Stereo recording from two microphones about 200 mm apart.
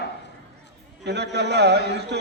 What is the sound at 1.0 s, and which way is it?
A man's voice, 55° right (ahead or behind).